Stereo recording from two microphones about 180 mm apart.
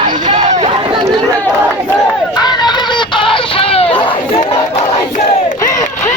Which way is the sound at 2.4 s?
25° left (ahead or behind).